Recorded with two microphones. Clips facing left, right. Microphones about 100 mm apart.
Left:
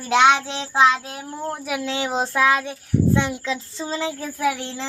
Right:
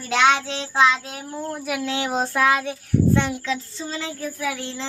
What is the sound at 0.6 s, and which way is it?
Speech, 5° left (ahead or behind).